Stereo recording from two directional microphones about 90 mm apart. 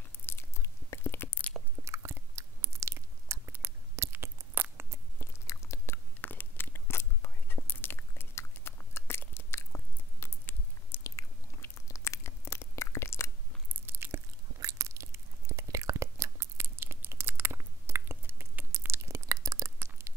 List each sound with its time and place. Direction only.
0.3 s chewing: 30° left (ahead or behind)
1.9 s chewing: 30° right (ahead or behind)
3.5 s a sound: 30° right (ahead or behind)
5.2 s biting: 35° left (ahead or behind)
6.2 s whispering: 25° left (ahead or behind)
10.2 s chewing: 25° left (ahead or behind)
13.7 s biting: 25° right (ahead or behind)